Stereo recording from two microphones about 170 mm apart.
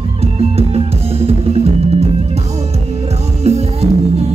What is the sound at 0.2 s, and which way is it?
Music, 35° right (ahead or behind).